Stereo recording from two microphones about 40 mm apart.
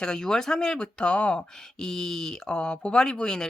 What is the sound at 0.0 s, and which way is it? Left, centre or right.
Speech, centre.